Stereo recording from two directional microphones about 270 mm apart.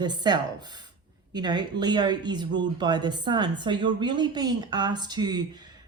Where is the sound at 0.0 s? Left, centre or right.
Centre.